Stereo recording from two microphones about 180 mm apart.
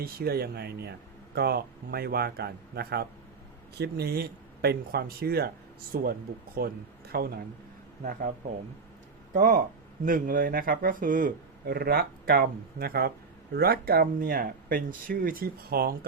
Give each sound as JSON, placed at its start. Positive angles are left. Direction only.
{"t": 0.0, "sound": "a man's voice", "side_deg": -60}
{"t": 9.3, "sound": "speech", "side_deg": -50}